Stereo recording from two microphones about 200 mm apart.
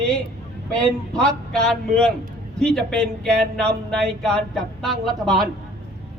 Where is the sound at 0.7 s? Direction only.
5° left (ahead or behind).